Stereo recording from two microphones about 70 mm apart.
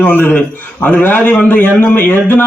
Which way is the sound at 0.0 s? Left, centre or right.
Left.